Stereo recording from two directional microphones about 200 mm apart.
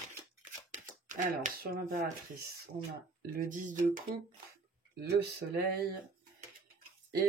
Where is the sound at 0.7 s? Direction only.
40° right (ahead or behind).